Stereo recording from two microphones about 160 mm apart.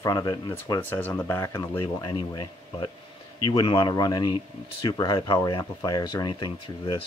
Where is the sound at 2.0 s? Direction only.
25° left (ahead or behind).